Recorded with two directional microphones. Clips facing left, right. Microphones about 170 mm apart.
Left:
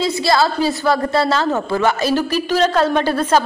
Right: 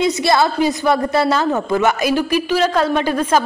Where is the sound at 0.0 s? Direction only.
20° right (ahead or behind).